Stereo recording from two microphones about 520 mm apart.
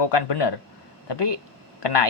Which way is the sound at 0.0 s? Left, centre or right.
Left.